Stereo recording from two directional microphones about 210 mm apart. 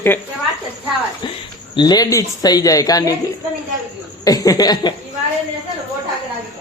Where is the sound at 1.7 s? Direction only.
20° left (ahead or behind).